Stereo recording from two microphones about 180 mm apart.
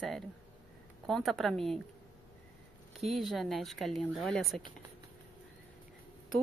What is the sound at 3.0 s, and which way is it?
A woman's voice, centre (ahead or behind).